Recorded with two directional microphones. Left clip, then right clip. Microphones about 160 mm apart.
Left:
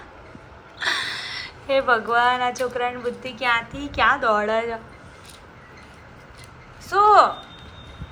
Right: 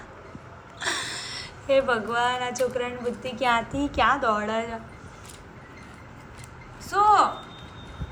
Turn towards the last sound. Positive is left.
turn(degrees=-10)  # may be behind; listen again after turning